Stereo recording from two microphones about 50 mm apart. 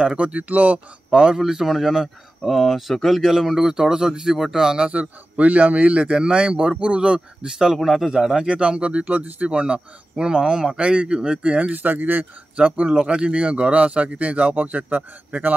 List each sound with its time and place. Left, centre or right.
0.0 s a man's voice: centre
1.1 s speech: centre
7.7 s a man's voice: centre; by 11.7 s right
11.7 s speech: right
12.5 s a man's voice: right